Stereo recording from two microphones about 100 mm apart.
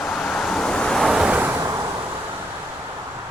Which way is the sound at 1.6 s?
35° right (ahead or behind).